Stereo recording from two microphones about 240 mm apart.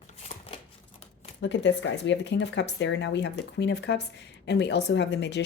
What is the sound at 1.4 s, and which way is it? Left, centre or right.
A woman's voice, left.